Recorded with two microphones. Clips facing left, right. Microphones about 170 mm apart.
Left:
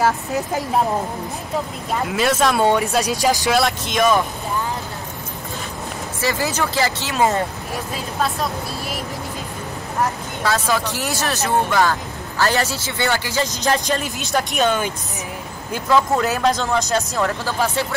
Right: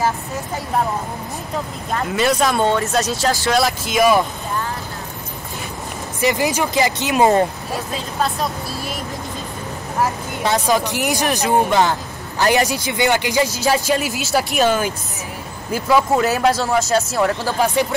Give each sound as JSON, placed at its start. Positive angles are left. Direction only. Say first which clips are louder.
{"t": 2.0, "sound": "speech", "louder": "right 1 dB", "side_deg": 0}
{"t": 3.5, "sound": "speech", "louder": "right 1 dB", "side_deg": 0}
{"t": 6.2, "sound": "speech", "louder": "right 4 dB", "side_deg": -15}
{"t": 8.2, "sound": "speech", "louder": "right 1 dB", "side_deg": 0}
{"t": 10.4, "sound": "speech", "louder": "right 3 dB", "side_deg": -20}